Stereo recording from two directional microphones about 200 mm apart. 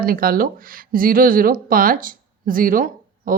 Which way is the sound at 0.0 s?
45° right (ahead or behind).